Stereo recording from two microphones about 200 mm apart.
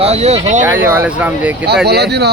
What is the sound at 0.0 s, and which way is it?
Speech, 30° right (ahead or behind).